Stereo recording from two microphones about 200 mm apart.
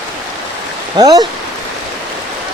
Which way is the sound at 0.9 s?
20° right (ahead or behind).